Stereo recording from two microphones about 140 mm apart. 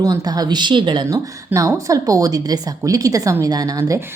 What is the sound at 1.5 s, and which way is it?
A woman's voice, 25° right (ahead or behind).